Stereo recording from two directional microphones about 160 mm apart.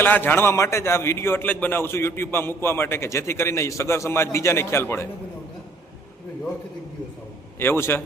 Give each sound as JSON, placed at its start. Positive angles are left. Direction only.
{"t": 0.0, "sound": "a man's voice", "side_deg": 10}
{"t": 7.6, "sound": "a man's voice", "side_deg": 15}